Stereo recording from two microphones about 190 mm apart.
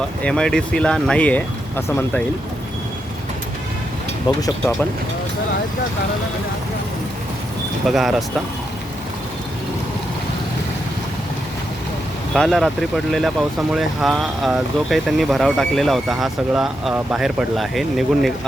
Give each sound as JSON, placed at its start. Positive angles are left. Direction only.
{"t": 0.2, "sound": "speech", "side_deg": 5}
{"t": 4.3, "sound": "speech", "side_deg": 20}
{"t": 7.9, "sound": "speech", "side_deg": 0}
{"t": 12.3, "sound": "speech", "side_deg": 0}